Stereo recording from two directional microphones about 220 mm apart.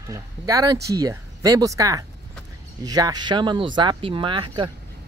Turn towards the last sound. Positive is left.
turn(degrees=-20)  # may be behind; listen again after turning